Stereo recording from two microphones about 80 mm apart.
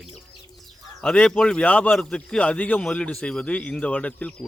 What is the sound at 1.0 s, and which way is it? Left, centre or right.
Speech, centre.